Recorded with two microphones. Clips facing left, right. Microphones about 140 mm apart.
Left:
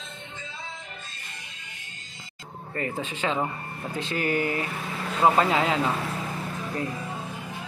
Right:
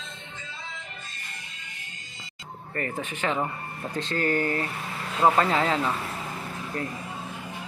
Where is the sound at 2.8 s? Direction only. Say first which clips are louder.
Left 1 dB; 15° left (ahead or behind).